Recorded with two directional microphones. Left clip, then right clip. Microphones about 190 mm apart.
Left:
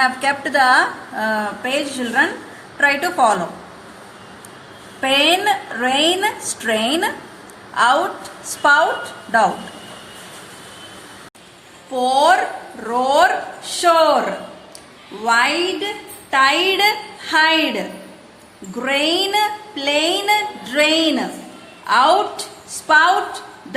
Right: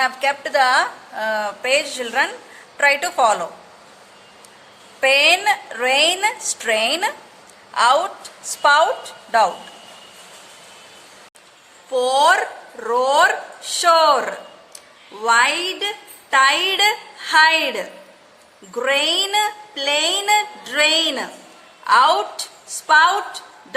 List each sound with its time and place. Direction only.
0.0 s a woman's voice: 35° right (ahead or behind)
4.9 s a woman's voice: 40° right (ahead or behind)
11.9 s a woman's voice: 35° right (ahead or behind)